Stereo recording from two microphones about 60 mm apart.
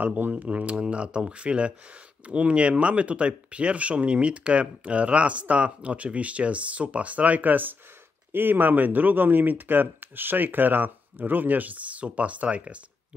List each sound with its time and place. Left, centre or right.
0.0 s speech: right